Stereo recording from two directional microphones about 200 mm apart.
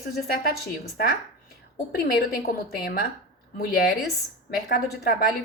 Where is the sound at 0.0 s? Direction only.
50° left (ahead or behind).